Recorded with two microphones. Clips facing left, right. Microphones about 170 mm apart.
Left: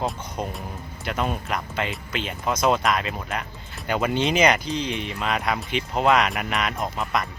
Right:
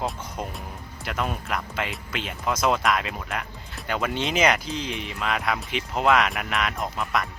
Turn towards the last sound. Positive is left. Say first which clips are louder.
# left 1 dB
turn(degrees=0)  # may be behind; listen again after turning